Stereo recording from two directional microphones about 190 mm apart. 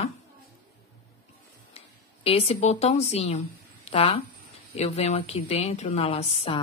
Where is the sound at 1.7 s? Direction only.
30° left (ahead or behind).